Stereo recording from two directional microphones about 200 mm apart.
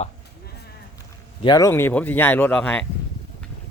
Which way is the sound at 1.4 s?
20° left (ahead or behind).